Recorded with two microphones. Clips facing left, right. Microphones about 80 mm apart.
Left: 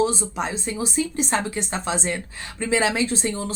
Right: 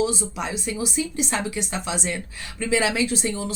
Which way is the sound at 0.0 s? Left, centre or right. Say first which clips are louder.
Left 2 dB; left.